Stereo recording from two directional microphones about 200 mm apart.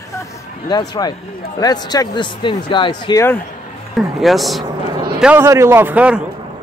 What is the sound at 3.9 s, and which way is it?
A man's voice, centre (ahead or behind).